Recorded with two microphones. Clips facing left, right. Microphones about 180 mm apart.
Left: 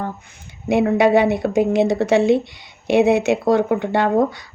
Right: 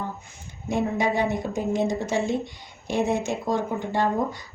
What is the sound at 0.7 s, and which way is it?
Speech, 75° left (ahead or behind).